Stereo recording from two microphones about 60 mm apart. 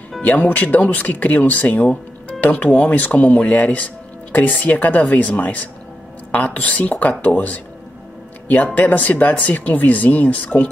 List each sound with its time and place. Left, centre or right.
0.2 s speech: left
8.7 s speech: left